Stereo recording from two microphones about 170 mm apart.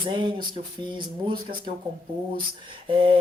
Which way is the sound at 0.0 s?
25° right (ahead or behind).